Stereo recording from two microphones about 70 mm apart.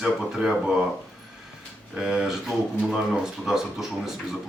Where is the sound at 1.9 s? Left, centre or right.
Centre.